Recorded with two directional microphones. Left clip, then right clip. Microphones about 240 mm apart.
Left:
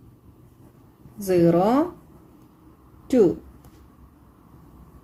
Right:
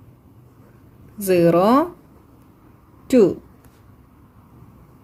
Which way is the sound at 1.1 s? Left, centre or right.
Right.